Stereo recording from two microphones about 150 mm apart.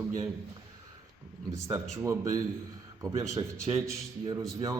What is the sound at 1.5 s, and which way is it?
A man's voice, 20° right (ahead or behind).